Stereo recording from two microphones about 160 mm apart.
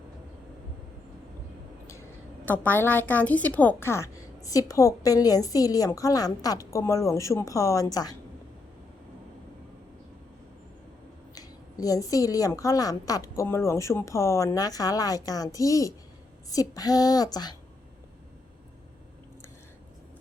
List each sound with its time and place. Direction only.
2.4 s a woman's voice: 10° left (ahead or behind)
11.3 s a woman's voice: 20° left (ahead or behind)